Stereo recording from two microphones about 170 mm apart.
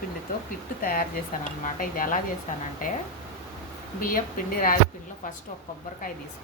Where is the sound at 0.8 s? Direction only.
60° left (ahead or behind).